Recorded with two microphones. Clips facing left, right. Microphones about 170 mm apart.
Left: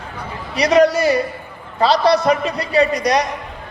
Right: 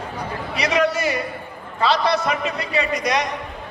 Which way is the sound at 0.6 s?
40° left (ahead or behind).